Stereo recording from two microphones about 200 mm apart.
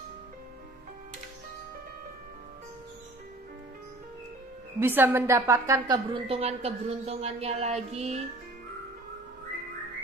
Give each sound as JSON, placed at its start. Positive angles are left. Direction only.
{"t": 4.7, "sound": "a woman's voice", "side_deg": -10}
{"t": 6.2, "sound": "a woman's voice", "side_deg": -30}